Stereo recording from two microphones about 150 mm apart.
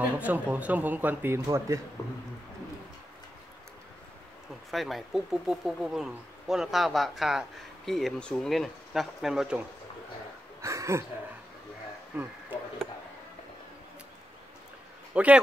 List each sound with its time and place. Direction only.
0.2 s speech: 10° right (ahead or behind)
2.0 s speech: 20° left (ahead or behind)
4.6 s speech: centre (ahead or behind)
10.6 s speech: 20° right (ahead or behind)
12.1 s speech: 10° right (ahead or behind)
15.2 s speech: 10° right (ahead or behind)